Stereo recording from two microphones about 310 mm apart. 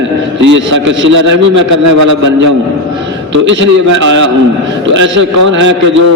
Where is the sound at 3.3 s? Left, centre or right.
Right.